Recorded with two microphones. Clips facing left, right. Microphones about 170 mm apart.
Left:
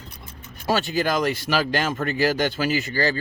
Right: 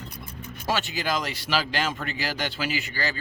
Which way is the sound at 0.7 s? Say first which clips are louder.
Left 5 dB; 45° left (ahead or behind).